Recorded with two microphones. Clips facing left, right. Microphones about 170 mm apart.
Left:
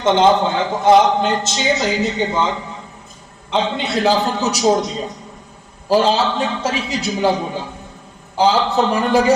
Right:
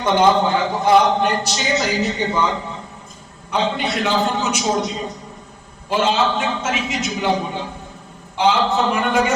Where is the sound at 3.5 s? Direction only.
25° left (ahead or behind).